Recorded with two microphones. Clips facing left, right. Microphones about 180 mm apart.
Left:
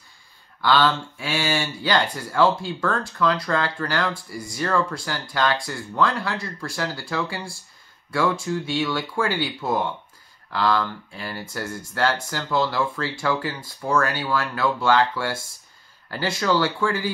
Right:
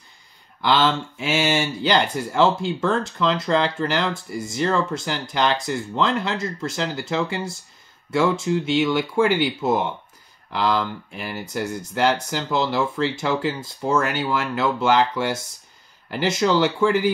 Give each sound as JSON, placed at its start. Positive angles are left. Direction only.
{"t": 0.6, "sound": "speech", "side_deg": -20}